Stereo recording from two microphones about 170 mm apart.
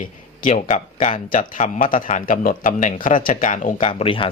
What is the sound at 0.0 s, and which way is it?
Speech, 50° left (ahead or behind).